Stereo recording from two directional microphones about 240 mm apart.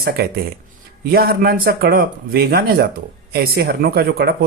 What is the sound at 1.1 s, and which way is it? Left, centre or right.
Speech, right.